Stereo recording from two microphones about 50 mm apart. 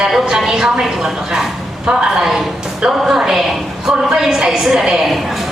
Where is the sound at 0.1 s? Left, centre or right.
Centre.